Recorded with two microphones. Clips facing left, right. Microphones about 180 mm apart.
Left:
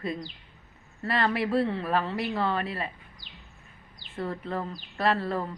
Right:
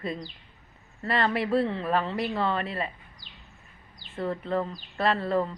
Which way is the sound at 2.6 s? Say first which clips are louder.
Right 1 dB; 25° right (ahead or behind).